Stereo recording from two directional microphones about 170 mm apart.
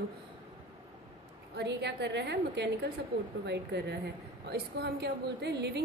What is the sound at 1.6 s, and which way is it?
A woman's voice, 90° right.